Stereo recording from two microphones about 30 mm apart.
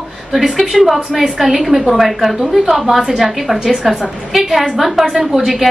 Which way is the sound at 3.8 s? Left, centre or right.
Centre.